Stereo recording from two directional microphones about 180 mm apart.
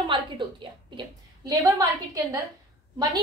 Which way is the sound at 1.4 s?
20° right (ahead or behind).